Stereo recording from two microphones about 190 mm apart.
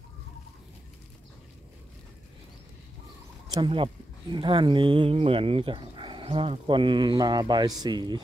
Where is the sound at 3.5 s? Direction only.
25° right (ahead or behind).